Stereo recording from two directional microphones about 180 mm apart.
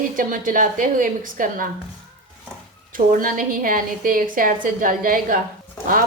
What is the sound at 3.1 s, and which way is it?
A woman's voice, 50° right (ahead or behind).